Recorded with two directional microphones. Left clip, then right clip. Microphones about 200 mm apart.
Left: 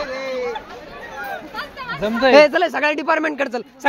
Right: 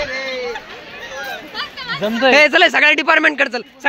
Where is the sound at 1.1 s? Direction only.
35° left (ahead or behind).